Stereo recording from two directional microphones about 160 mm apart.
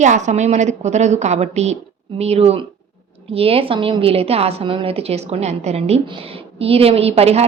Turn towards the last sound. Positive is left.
turn(degrees=-40)  # may be behind; listen again after turning